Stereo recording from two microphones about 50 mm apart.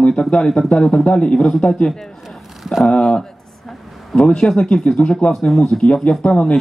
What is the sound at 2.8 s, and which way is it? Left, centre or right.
Speech, centre.